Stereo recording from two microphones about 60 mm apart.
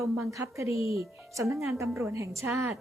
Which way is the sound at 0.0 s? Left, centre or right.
Right.